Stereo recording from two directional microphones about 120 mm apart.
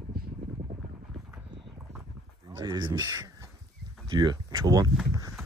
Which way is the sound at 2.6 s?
30° right (ahead or behind).